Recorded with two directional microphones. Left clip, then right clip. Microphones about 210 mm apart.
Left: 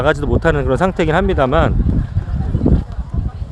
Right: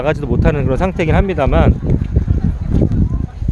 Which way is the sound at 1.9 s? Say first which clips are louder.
Right 2 dB; 20° right (ahead or behind).